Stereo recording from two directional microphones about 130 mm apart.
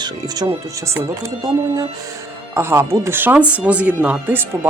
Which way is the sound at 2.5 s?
20° right (ahead or behind).